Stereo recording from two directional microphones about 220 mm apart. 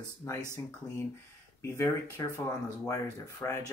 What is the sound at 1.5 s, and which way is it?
Speech, 10° left (ahead or behind).